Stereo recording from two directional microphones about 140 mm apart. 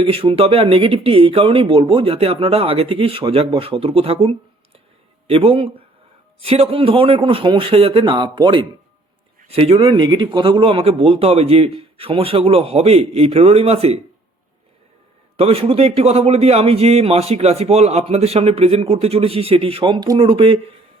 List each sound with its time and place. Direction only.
0.0 s a man's voice: 40° right (ahead or behind)
15.4 s a man's voice: 45° right (ahead or behind)